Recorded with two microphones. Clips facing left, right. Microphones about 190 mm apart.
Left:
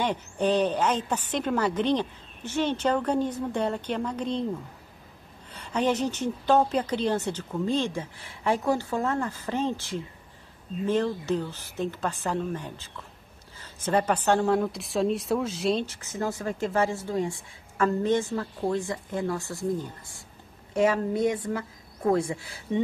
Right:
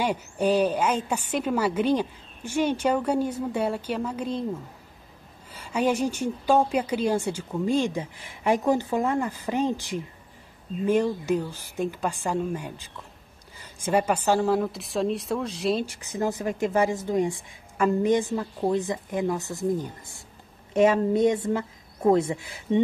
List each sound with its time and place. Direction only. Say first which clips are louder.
0.0 s a woman's voice: right 1 dB; 10° right (ahead or behind)
5.5 s a woman's voice: right 1 dB; 10° right (ahead or behind)
15.8 s a woman's voice: right 3 dB; 15° right (ahead or behind)